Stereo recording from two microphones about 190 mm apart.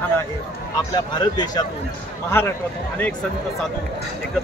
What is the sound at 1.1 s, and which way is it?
A man's voice, 20° left (ahead or behind).